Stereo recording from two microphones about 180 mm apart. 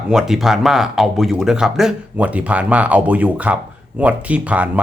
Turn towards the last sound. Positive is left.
turn(degrees=-10)  # may be behind; listen again after turning